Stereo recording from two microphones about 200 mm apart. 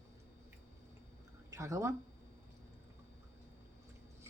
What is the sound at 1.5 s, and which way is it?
Speech, 15° right (ahead or behind).